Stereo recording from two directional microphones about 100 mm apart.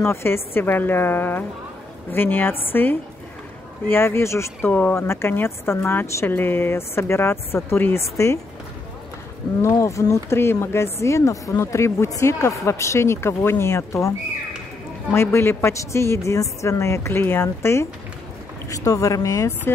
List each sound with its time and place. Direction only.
0.0 s speech: 25° left (ahead or behind)
4.6 s speech: 15° left (ahead or behind)
9.6 s speech: 30° left (ahead or behind)
15.1 s speech: 25° left (ahead or behind)